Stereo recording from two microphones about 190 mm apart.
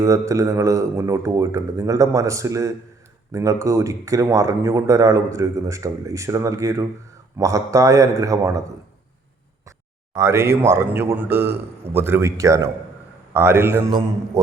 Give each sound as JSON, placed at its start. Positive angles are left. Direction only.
{"t": 0.0, "sound": "speech", "side_deg": -15}
{"t": 10.2, "sound": "speech", "side_deg": -15}